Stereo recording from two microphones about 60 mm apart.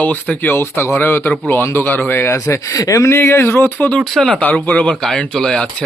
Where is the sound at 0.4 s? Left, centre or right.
Left.